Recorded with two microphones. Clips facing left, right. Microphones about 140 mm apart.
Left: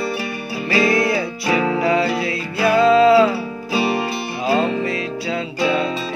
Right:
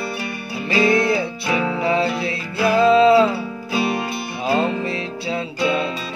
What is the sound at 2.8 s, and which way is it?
Music, 25° right (ahead or behind).